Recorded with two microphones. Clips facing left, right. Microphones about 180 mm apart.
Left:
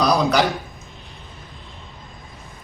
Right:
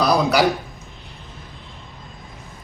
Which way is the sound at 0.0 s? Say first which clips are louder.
Even; centre (ahead or behind).